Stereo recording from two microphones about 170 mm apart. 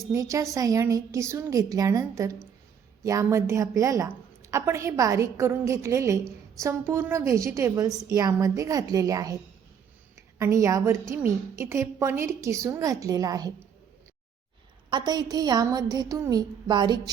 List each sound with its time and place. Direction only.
0.1 s a woman's voice: 20° right (ahead or behind)
10.3 s a woman's voice: 15° right (ahead or behind)
14.8 s a woman's voice: 25° right (ahead or behind)